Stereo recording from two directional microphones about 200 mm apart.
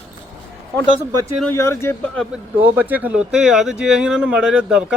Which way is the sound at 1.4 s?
10° left (ahead or behind).